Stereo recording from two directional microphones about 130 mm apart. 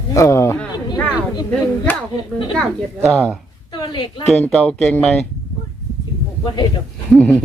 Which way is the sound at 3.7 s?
35° left (ahead or behind).